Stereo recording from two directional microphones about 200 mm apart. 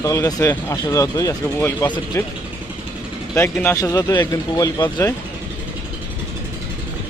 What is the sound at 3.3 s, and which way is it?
Speech, 10° left (ahead or behind).